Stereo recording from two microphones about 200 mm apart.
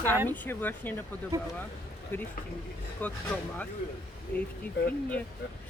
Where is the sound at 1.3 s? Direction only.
20° right (ahead or behind).